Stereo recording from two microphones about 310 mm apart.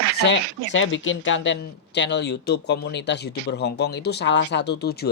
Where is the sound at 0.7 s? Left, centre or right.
Left.